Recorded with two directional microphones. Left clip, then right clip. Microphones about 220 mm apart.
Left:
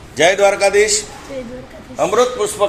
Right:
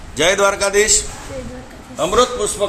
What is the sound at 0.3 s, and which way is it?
Speech, 15° right (ahead or behind).